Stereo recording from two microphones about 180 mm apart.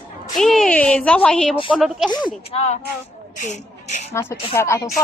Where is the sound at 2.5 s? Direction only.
35° left (ahead or behind).